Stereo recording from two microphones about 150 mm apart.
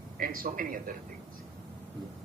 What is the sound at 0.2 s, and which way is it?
Speech, 70° right (ahead or behind).